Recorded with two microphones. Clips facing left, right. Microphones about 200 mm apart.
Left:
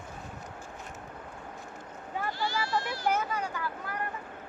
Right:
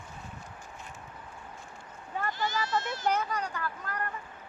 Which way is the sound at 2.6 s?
20° right (ahead or behind).